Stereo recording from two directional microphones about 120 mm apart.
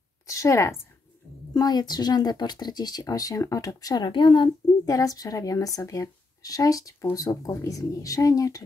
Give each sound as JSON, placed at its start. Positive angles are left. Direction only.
{"t": 0.3, "sound": "speech", "side_deg": 25}
{"t": 4.8, "sound": "speech", "side_deg": 30}